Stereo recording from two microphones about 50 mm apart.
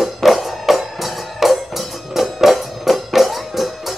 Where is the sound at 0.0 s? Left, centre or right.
Centre.